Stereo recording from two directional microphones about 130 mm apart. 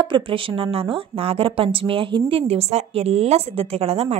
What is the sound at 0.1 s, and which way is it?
A woman's voice, 40° right (ahead or behind).